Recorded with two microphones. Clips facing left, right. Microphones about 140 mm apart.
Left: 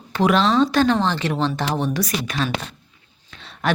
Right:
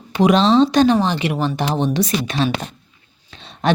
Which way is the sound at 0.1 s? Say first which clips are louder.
Right 4 dB; 15° right (ahead or behind).